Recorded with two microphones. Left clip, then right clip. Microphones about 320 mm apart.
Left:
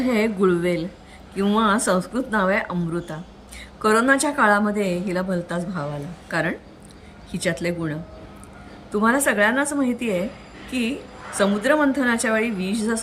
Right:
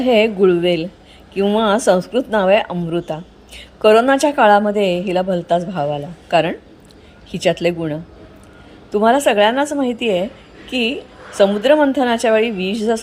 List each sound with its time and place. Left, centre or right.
0.0 s a woman's voice: centre
7.3 s a woman's voice: centre